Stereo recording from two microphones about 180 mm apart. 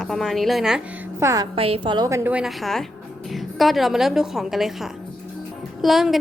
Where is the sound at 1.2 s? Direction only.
15° right (ahead or behind).